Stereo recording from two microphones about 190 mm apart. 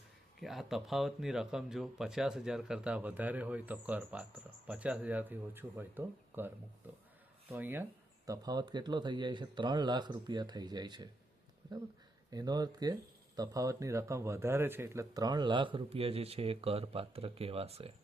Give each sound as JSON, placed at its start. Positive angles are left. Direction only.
{"t": 0.3, "sound": "speech", "side_deg": 0}
{"t": 11.6, "sound": "a sound", "side_deg": -20}
{"t": 12.3, "sound": "speech", "side_deg": -20}